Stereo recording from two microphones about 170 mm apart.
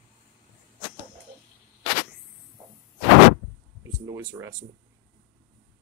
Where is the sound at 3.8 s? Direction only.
20° right (ahead or behind).